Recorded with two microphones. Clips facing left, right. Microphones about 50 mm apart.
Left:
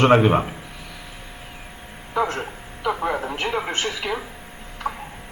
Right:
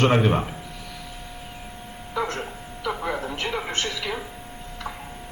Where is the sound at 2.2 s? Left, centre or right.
Left.